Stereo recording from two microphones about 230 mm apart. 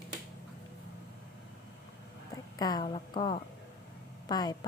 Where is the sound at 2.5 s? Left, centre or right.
Centre.